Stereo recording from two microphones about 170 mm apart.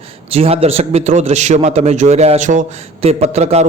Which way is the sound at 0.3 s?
35° right (ahead or behind).